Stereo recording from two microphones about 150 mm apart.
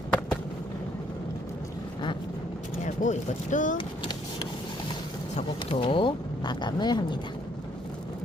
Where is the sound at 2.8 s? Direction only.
55° left (ahead or behind).